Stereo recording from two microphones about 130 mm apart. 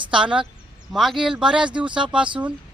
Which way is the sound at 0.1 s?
5° right (ahead or behind).